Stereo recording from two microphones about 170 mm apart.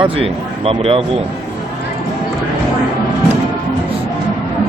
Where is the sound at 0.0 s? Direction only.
35° right (ahead or behind).